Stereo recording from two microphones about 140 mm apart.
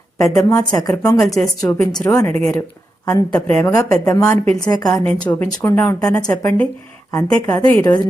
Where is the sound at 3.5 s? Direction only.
20° left (ahead or behind).